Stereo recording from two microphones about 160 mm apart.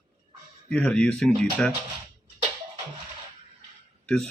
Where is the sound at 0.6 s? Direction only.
5° left (ahead or behind).